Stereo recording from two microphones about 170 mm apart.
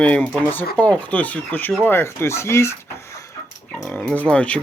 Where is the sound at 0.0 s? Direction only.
10° left (ahead or behind).